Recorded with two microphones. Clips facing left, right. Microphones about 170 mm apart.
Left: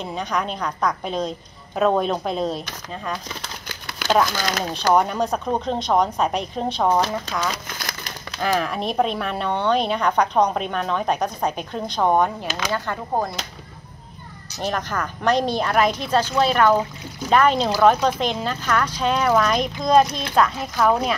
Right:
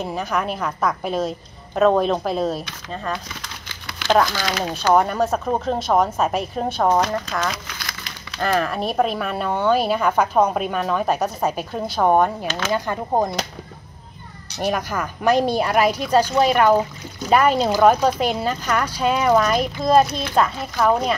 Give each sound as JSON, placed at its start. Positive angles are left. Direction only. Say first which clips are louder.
{"t": 0.0, "sound": "speech", "louder": "right 2 dB", "side_deg": -5}
{"t": 3.6, "sound": "a sound", "louder": "left 2 dB", "side_deg": 45}
{"t": 4.1, "sound": "speech", "louder": "right 1 dB", "side_deg": 0}
{"t": 7.5, "sound": "crumpling", "louder": "left 2 dB", "side_deg": 45}
{"t": 8.4, "sound": "speech", "louder": "right 2 dB", "side_deg": 0}
{"t": 12.4, "sound": "speech", "louder": "right 3 dB", "side_deg": 15}
{"t": 12.7, "sound": "speech", "louder": "right 4 dB", "side_deg": -15}
{"t": 14.6, "sound": "speech", "louder": "right 2 dB", "side_deg": -10}